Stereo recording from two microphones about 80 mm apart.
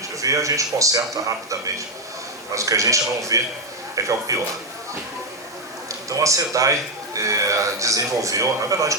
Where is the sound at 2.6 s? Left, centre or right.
Right.